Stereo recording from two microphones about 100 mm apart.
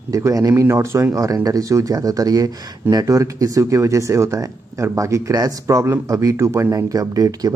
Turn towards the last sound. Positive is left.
turn(degrees=-35)  # may be behind; listen again after turning